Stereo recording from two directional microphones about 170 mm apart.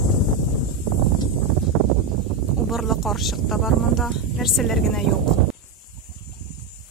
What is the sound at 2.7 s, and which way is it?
Speech, centre (ahead or behind).